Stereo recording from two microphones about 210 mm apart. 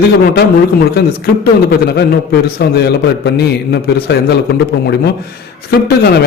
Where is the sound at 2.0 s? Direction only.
50° left (ahead or behind).